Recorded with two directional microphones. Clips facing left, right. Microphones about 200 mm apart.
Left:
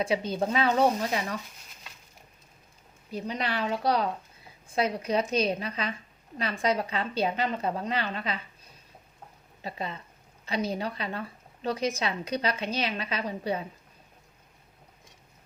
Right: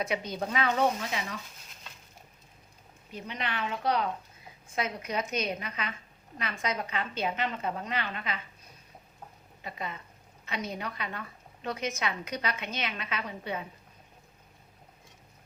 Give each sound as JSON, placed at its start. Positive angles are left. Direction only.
{"t": 0.0, "sound": "speech", "side_deg": 30}
{"t": 3.1, "sound": "a woman's voice", "side_deg": 35}
{"t": 9.6, "sound": "a woman's voice", "side_deg": 30}